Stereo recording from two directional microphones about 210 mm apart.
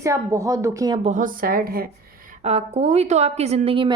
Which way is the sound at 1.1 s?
40° right (ahead or behind).